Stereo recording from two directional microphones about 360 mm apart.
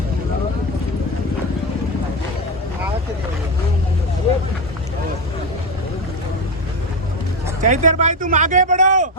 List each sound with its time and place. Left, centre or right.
7.6 s speech: right